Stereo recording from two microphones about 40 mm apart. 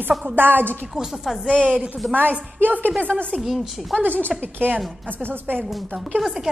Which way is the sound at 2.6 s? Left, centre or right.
Right.